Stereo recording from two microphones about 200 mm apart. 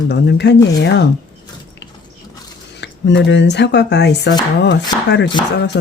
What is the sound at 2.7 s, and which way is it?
Speech, 60° left (ahead or behind).